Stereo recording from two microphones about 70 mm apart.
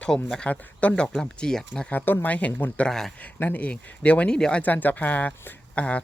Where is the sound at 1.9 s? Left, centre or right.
Left.